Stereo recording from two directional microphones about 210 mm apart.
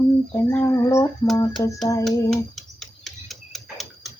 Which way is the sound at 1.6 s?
15° left (ahead or behind).